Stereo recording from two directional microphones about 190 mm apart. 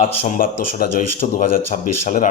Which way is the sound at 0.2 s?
45° left (ahead or behind).